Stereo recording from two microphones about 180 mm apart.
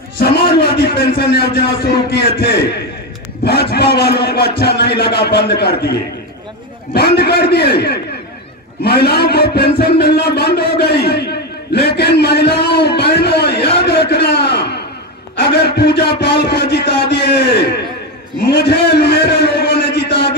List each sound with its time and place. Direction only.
0.2 s a man's voice: 65° left (ahead or behind)
3.7 s a man's voice: 65° left (ahead or behind)
18.5 s a sound: 65° left (ahead or behind)